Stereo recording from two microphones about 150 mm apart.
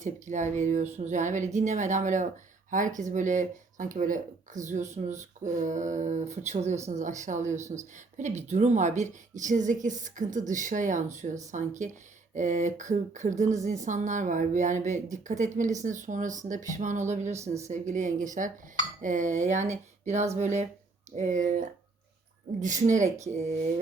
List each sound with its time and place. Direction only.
0.0 s speech: 55° right (ahead or behind)